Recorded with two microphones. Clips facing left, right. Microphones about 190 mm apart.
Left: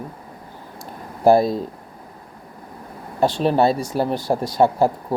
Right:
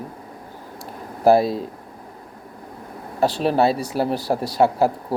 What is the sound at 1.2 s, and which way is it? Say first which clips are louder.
Speech: left 1 dB; 5° right (ahead or behind).